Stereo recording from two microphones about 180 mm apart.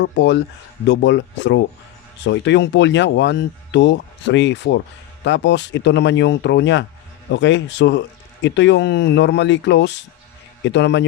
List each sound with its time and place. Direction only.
0.0 s speech: 80° left